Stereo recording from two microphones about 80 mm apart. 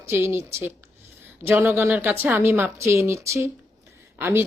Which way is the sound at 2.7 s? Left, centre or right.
Right.